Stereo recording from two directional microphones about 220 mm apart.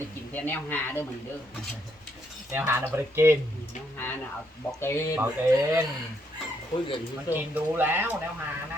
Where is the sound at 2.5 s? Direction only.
10° right (ahead or behind).